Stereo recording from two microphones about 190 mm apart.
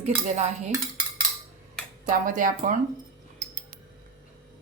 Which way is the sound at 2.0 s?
45° right (ahead or behind).